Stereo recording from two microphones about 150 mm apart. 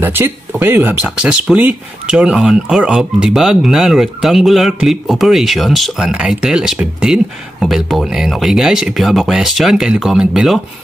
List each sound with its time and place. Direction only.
0.0 s speech: 15° right (ahead or behind)